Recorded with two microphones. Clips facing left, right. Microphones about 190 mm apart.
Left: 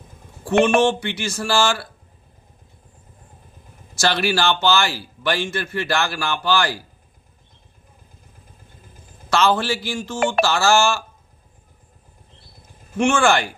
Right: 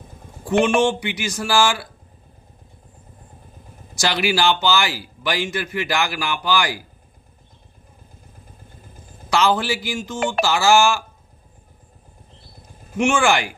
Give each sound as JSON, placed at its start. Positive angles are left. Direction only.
{"t": 0.8, "sound": "speech", "side_deg": -15}
{"t": 3.9, "sound": "speech", "side_deg": -15}
{"t": 9.3, "sound": "speech", "side_deg": -15}
{"t": 13.0, "sound": "speech", "side_deg": -15}